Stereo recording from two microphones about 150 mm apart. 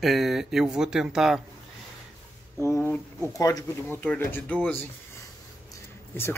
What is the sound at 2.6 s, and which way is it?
Speech, 15° left (ahead or behind).